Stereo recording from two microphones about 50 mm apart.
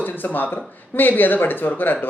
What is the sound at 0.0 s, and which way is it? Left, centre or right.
Speech, left.